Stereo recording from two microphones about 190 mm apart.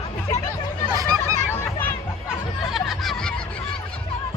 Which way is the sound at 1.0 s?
20° right (ahead or behind).